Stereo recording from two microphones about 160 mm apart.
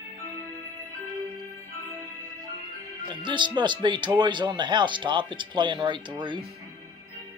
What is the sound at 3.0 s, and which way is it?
Speech, 30° right (ahead or behind).